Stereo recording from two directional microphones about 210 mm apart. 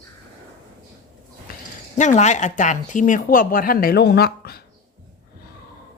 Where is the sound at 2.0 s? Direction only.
35° left (ahead or behind).